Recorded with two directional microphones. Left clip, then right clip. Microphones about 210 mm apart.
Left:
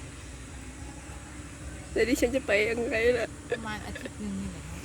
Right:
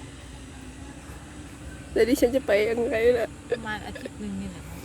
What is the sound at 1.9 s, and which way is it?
Speech, 20° right (ahead or behind).